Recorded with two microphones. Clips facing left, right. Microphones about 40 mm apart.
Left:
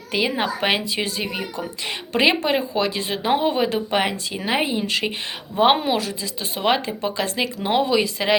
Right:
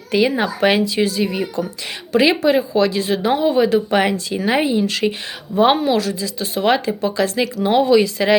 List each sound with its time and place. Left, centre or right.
0.1 s speech: centre
0.4 s a woman's voice: centre